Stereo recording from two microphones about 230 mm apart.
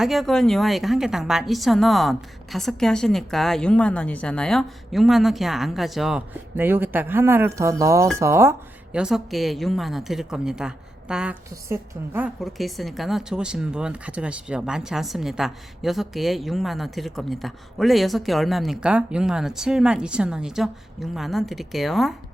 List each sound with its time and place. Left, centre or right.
0.0 s a woman's voice: centre